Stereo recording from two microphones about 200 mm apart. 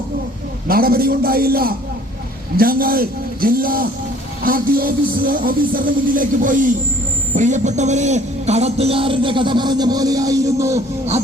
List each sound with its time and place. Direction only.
0.7 s a man's voice: 50° right (ahead or behind); by 10.8 s 15° right (ahead or behind)